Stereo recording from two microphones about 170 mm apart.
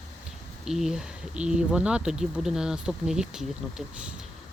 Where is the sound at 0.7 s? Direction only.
5° right (ahead or behind).